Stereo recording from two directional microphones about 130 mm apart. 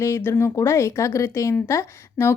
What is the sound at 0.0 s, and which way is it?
Speech, 20° left (ahead or behind).